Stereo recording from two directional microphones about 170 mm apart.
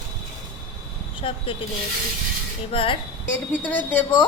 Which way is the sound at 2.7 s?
30° left (ahead or behind).